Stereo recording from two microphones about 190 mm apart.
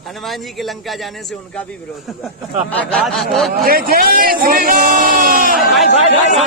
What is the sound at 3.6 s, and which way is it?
Speech, 50° right (ahead or behind).